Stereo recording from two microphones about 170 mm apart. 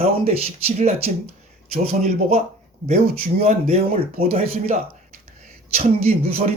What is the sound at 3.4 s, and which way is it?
Speech, 40° right (ahead or behind).